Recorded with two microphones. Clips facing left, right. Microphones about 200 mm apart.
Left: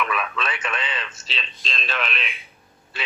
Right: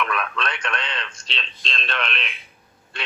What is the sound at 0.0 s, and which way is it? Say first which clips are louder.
Speech: even; 5° left (ahead or behind).